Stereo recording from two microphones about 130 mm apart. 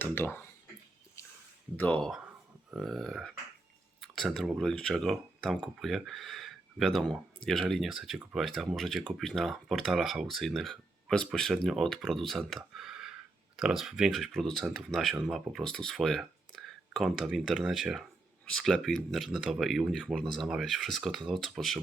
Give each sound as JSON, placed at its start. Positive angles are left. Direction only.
{"t": 0.0, "sound": "speech", "side_deg": 15}
{"t": 1.2, "sound": "a sound", "side_deg": 25}
{"t": 1.7, "sound": "speech", "side_deg": 10}